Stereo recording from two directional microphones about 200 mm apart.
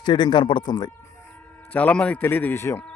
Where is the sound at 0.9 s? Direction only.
5° left (ahead or behind).